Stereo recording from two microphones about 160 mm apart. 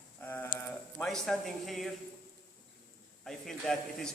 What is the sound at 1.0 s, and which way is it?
Speech, 5° left (ahead or behind).